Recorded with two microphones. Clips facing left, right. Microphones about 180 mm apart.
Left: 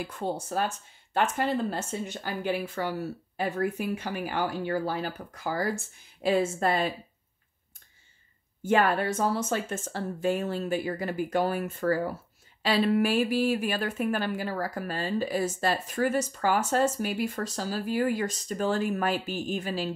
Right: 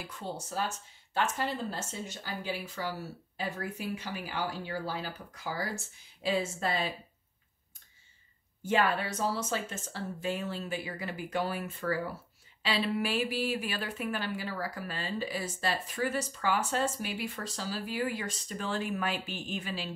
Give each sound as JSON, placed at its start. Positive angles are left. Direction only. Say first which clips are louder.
{"t": 0.0, "sound": "a woman's voice", "louder": "left 8 dB", "side_deg": 50}
{"t": 8.6, "sound": "a woman's voice", "louder": "left 5 dB", "side_deg": 50}